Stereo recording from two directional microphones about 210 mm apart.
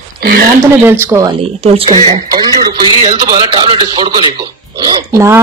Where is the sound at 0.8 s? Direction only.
10° right (ahead or behind).